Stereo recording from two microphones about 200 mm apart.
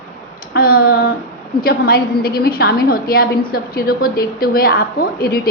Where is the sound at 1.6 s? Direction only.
50° left (ahead or behind).